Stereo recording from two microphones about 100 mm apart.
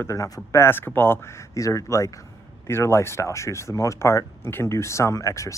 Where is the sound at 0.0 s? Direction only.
30° left (ahead or behind).